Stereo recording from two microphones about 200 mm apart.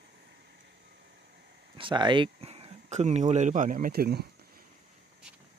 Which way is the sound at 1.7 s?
25° right (ahead or behind).